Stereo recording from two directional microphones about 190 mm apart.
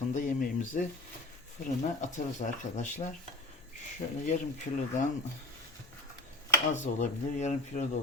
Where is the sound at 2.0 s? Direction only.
40° left (ahead or behind).